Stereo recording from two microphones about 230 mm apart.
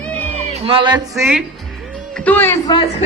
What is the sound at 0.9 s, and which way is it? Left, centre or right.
Speech, centre.